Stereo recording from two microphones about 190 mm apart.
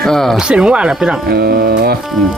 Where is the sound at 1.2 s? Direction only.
55° right (ahead or behind).